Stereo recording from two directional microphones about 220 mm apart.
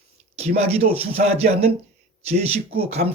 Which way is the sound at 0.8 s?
25° right (ahead or behind).